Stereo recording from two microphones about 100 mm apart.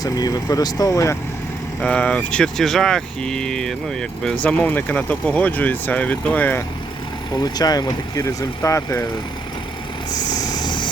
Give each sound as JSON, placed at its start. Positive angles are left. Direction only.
{"t": 0.0, "sound": "speech", "side_deg": 40}
{"t": 1.8, "sound": "speech", "side_deg": 10}
{"t": 7.3, "sound": "speech", "side_deg": 40}
{"t": 10.2, "sound": "vehicle", "side_deg": 40}